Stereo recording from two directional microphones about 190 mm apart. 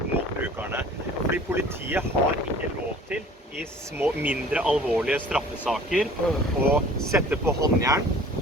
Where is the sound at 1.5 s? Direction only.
10° right (ahead or behind).